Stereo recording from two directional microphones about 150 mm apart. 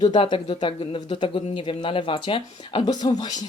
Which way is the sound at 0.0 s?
30° left (ahead or behind).